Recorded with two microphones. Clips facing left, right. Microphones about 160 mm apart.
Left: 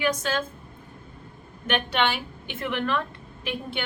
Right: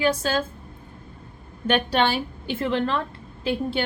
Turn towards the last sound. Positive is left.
turn(degrees=-30)  # may be behind; listen again after turning